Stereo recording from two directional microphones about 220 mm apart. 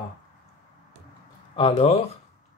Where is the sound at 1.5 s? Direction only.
25° left (ahead or behind).